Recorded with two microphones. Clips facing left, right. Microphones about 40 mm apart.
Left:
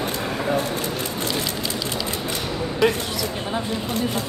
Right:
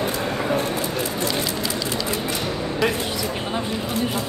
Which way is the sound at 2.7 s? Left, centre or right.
Centre.